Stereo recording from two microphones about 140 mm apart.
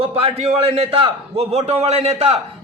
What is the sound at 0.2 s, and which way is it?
A man's voice, 45° right (ahead or behind).